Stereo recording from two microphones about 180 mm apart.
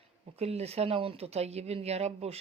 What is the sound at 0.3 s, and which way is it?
Speech, 35° right (ahead or behind).